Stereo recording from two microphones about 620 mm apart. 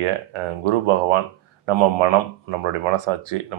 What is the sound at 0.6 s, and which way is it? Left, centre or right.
Speech, right.